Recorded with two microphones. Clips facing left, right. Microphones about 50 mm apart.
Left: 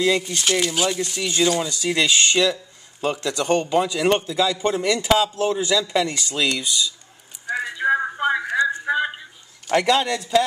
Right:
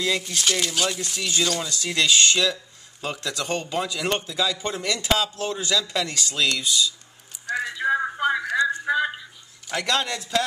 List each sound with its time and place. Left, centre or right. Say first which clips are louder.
0.0 s speech: left 4 dB; centre
7.4 s a sound: left 3 dB; centre
9.8 s speech: left 5 dB; centre